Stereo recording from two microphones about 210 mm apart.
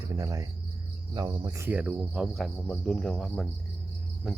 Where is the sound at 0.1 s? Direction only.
15° right (ahead or behind).